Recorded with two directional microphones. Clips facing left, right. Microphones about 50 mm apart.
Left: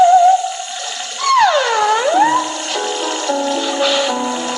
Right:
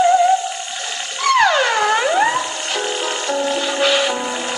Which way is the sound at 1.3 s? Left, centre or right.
Right.